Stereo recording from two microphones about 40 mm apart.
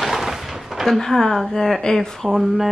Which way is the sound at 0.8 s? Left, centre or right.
Centre.